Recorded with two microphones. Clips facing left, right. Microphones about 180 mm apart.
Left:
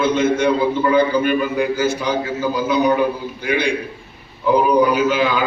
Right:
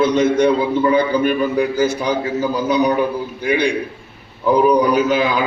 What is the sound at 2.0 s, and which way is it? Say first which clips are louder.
Speech: right 1 dB; 40° right (ahead or behind).